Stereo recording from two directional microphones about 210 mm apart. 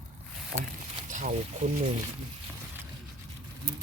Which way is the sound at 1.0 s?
35° right (ahead or behind).